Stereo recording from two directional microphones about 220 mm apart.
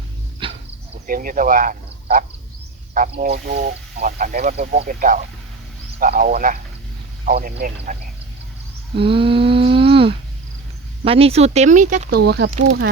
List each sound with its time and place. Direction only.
0.4 s dog: 20° right (ahead or behind)
1.0 s speech: 40° right (ahead or behind)
9.0 s humming: 25° right (ahead or behind)
11.0 s speech: 25° right (ahead or behind)
12.1 s speech: 50° right (ahead or behind)
12.5 s speech: 30° right (ahead or behind)